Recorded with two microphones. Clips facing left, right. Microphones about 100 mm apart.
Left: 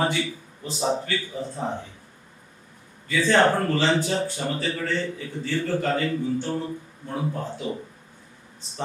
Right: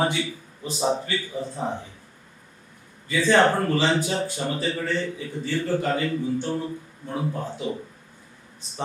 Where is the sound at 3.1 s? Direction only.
15° right (ahead or behind).